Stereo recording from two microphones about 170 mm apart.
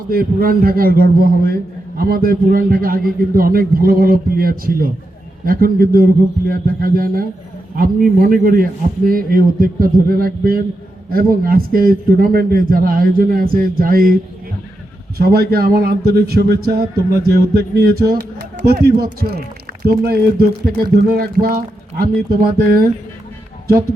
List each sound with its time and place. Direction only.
0.1 s a man's voice: 60° right (ahead or behind)
15.2 s a man's voice: 65° right (ahead or behind)